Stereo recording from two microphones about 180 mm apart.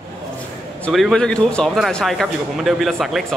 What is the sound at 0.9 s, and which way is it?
Speech, centre (ahead or behind).